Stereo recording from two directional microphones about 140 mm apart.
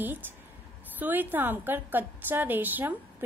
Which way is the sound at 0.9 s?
15° right (ahead or behind).